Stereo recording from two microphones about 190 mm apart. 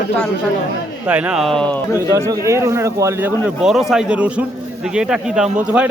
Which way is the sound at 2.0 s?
15° right (ahead or behind).